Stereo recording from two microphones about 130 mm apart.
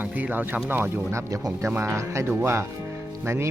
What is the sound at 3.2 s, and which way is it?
Music, 20° right (ahead or behind).